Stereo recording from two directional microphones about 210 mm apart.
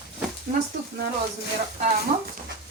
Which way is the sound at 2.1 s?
30° right (ahead or behind).